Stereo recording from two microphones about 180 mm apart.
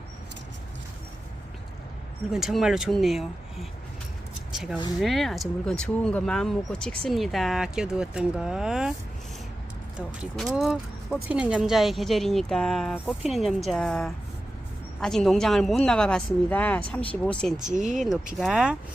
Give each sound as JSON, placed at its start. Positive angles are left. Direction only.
{"t": 2.3, "sound": "speech", "side_deg": 0}
{"t": 10.2, "sound": "speech", "side_deg": -5}
{"t": 17.7, "sound": "speech", "side_deg": -45}
{"t": 18.3, "sound": "speech", "side_deg": -5}